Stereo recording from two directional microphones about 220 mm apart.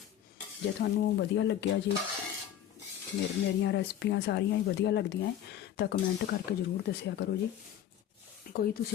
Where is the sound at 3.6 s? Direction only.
50° left (ahead or behind).